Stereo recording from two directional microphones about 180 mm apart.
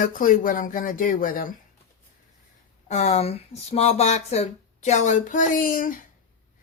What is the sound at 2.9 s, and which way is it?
Speech, 40° left (ahead or behind).